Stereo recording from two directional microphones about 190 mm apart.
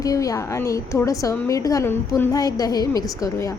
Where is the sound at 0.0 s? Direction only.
20° left (ahead or behind).